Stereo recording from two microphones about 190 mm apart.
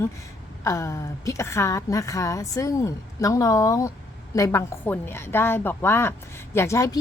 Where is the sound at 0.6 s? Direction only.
15° left (ahead or behind).